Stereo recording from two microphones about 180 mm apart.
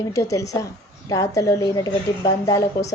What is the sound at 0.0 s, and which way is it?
A woman's voice, 20° left (ahead or behind).